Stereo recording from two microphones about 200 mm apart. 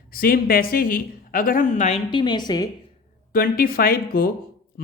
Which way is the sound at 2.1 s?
20° left (ahead or behind).